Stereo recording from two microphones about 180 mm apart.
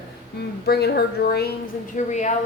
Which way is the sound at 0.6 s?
65° left (ahead or behind).